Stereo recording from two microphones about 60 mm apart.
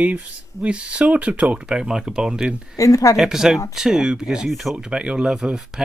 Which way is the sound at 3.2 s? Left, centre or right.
Centre.